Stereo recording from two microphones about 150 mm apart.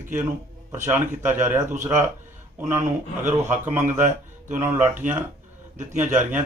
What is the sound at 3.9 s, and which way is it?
Speech, 55° right (ahead or behind).